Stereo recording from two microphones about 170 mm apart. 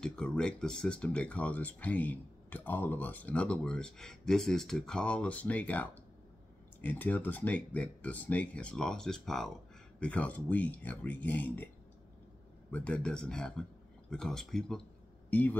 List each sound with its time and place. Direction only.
0.0 s speech: 5° left (ahead or behind)
12.7 s speech: 5° left (ahead or behind)